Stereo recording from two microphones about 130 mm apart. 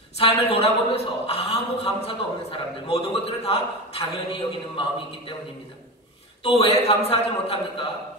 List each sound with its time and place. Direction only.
0.2 s a man's voice: 50° left (ahead or behind)
6.4 s a man's voice: 50° left (ahead or behind)